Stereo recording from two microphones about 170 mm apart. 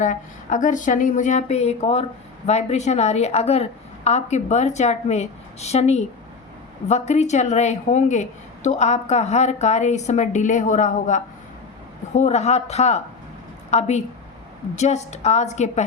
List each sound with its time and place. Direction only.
0.0 s a woman's voice: 45° left (ahead or behind)